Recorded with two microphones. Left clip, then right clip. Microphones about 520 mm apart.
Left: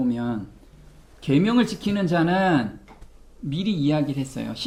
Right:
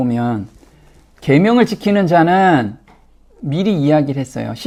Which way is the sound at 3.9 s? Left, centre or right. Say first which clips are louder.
Right 9 dB; right.